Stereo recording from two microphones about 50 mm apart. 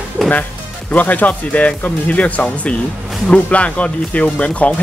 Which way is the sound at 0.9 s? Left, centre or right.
Left.